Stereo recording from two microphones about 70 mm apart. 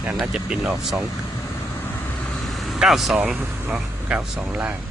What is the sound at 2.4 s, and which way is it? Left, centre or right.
Vehicle, centre.